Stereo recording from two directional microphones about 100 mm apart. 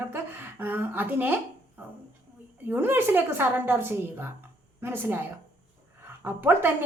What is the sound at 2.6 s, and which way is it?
A woman's voice, 20° right (ahead or behind).